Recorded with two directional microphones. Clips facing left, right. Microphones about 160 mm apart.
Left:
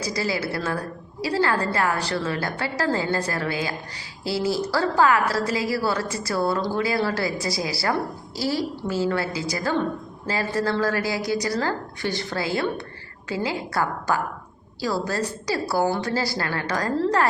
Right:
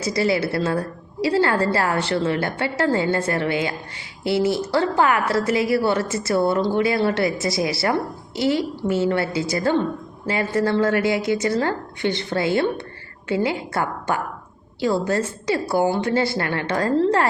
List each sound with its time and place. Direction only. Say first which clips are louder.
0.0 s a woman's voice: right 5 dB; 25° right (ahead or behind)
15.0 s a woman's voice: right 4 dB; 25° right (ahead or behind)